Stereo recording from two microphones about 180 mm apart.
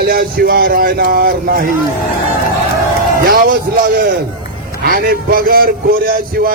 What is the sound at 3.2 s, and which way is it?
A man's voice, 55° right (ahead or behind).